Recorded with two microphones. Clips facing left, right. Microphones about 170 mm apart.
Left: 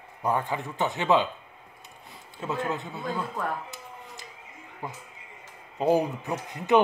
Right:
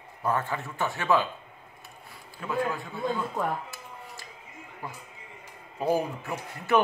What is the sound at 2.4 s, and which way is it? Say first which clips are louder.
Speech: right 1 dB; 25° left (ahead or behind).